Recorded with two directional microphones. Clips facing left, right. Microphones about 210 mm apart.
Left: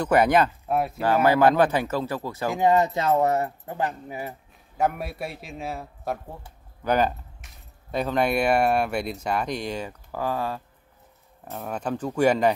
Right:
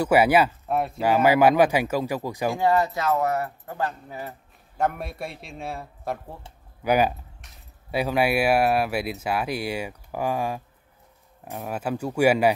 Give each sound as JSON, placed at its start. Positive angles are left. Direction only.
{"t": 0.0, "sound": "speech", "side_deg": -10}
{"t": 0.7, "sound": "speech", "side_deg": 5}
{"t": 1.0, "sound": "speech", "side_deg": -10}
{"t": 2.5, "sound": "speech", "side_deg": 20}
{"t": 6.8, "sound": "speech", "side_deg": -10}